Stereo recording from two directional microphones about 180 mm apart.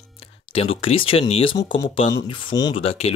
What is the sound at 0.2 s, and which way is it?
Speech, 30° left (ahead or behind).